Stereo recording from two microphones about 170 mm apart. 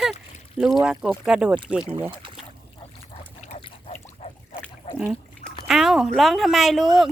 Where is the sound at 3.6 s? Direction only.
40° left (ahead or behind).